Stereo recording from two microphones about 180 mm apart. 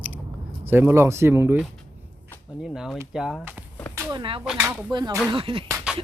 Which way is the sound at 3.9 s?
25° right (ahead or behind).